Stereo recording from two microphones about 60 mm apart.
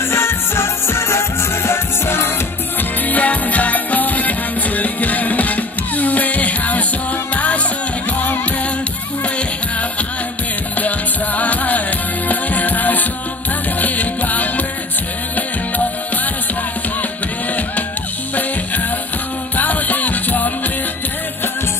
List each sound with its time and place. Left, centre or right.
0.1 s music: left
3.1 s music: left
10.8 s music: left
19.5 s music: left